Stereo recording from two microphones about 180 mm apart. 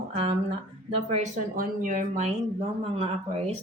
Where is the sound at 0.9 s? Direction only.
35° right (ahead or behind).